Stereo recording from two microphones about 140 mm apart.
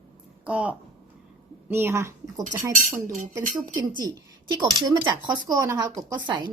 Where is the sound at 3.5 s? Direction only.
35° right (ahead or behind).